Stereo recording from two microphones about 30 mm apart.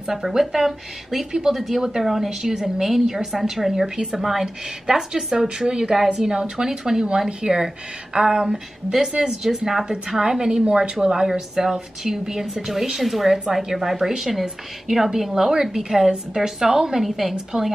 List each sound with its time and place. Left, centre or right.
0.4 s a woman's voice: centre
1.8 s a woman's voice: centre
4.2 s a woman's voice: centre
4.9 s speech: right
11.5 s a woman's voice: centre
17.0 s a woman's voice: centre